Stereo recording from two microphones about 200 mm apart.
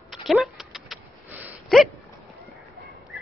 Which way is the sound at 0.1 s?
Centre (ahead or behind).